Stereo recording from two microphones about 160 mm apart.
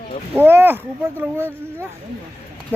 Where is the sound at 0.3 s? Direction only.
15° right (ahead or behind).